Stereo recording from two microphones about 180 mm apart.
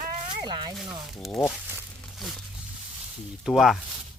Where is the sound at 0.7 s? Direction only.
Centre (ahead or behind).